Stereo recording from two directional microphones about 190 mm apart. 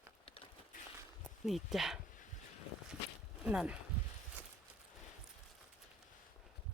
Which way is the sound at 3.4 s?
5° right (ahead or behind).